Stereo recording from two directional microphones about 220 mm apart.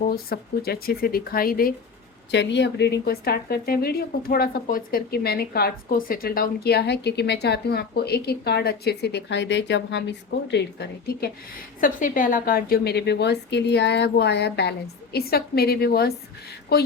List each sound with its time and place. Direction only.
0.0 s a woman's voice: 45° left (ahead or behind)
2.3 s a woman's voice: 50° left (ahead or behind)